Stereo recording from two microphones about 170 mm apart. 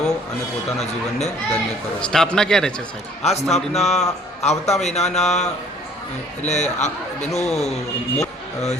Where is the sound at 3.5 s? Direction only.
40° left (ahead or behind).